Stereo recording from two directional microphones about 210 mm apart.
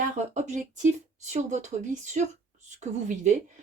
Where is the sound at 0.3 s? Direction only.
35° right (ahead or behind).